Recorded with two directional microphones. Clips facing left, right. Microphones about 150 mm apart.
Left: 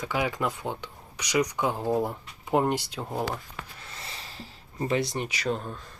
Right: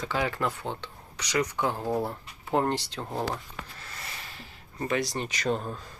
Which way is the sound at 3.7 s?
20° left (ahead or behind).